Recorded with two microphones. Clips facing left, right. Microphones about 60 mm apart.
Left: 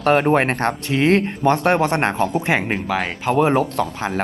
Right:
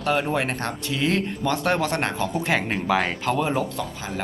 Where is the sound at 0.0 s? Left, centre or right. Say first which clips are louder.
Left 7 dB; left.